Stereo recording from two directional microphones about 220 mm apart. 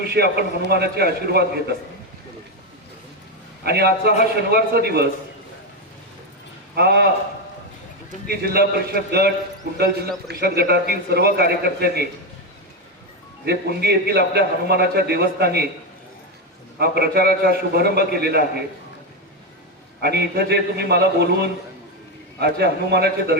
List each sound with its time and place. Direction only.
0.0 s a sound: 45° right (ahead or behind)
0.7 s a man's voice: 45° right (ahead or behind)
3.6 s a man's voice: 45° right (ahead or behind)
6.7 s a man's voice: 45° right (ahead or behind)
8.3 s a man's voice: 45° right (ahead or behind)
13.4 s a man's voice: 45° right (ahead or behind)
16.7 s a man's voice: 45° right (ahead or behind)
20.0 s a man's voice: 50° right (ahead or behind)